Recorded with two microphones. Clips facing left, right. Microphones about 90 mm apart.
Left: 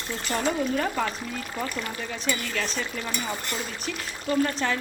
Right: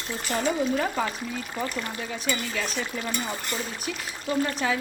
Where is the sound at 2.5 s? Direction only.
10° right (ahead or behind).